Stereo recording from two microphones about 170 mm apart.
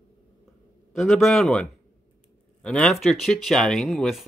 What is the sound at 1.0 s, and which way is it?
Speech, centre (ahead or behind).